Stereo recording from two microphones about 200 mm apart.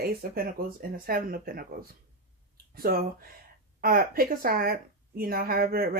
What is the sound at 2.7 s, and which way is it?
A woman's voice, 50° right (ahead or behind).